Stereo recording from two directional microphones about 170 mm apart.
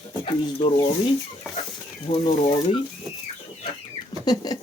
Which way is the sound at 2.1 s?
50° left (ahead or behind).